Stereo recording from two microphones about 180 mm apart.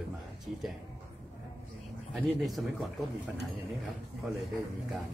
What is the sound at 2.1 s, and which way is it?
Speech, centre (ahead or behind).